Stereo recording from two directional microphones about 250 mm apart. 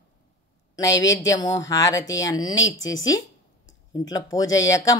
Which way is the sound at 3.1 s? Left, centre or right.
Centre.